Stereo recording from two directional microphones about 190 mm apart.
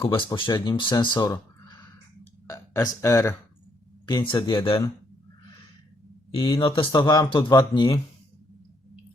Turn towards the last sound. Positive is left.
turn(degrees=25)  # may be behind; listen again after turning